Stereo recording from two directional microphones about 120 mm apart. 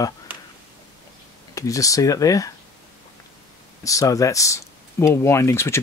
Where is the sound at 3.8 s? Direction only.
25° left (ahead or behind).